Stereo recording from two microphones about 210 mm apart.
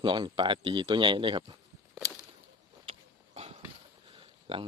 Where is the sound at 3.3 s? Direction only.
30° right (ahead or behind).